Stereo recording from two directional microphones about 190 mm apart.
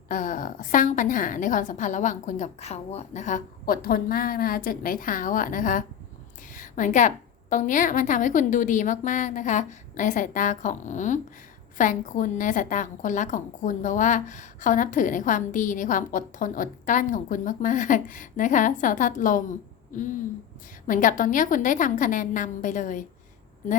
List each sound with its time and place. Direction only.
0.1 s a woman's voice: 45° left (ahead or behind)
6.5 s a sound: 40° left (ahead or behind)
7.5 s a woman's voice: 40° left (ahead or behind)
20.8 s a woman's voice: 45° left (ahead or behind)